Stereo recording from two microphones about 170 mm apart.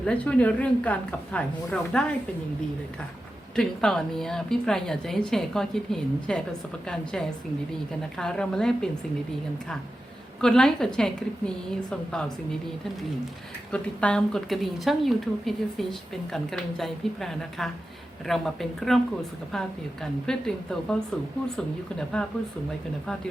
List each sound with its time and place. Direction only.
0.0 s a woman's voice: 5° left (ahead or behind)
3.5 s a woman's voice: 5° left (ahead or behind)
10.4 s a woman's voice: 5° left (ahead or behind)
13.7 s a woman's voice: 5° left (ahead or behind)
21.9 s a woman's voice: 5° left (ahead or behind)